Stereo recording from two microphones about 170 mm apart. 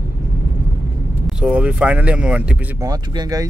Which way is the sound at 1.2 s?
5° right (ahead or behind).